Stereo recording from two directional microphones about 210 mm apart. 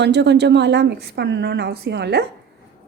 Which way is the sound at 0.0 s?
55° right (ahead or behind).